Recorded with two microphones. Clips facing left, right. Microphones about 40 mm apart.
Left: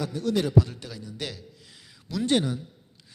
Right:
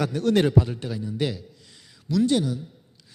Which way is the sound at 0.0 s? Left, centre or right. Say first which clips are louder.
Right 5 dB; right.